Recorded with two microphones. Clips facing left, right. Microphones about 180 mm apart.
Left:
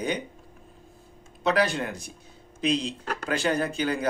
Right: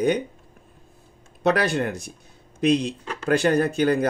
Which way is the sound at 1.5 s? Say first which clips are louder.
Right 3 dB; 55° right (ahead or behind).